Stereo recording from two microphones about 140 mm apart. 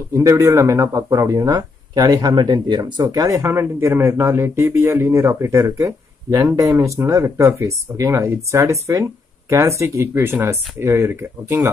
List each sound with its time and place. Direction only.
0.1 s speech: 25° right (ahead or behind)